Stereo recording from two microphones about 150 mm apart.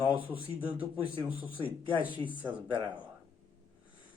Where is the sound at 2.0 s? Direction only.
35° left (ahead or behind).